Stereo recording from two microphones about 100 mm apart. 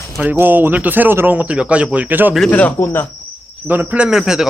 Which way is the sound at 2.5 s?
20° left (ahead or behind).